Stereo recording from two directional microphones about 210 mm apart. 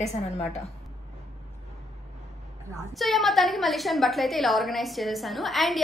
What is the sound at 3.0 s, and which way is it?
A woman's voice, centre (ahead or behind).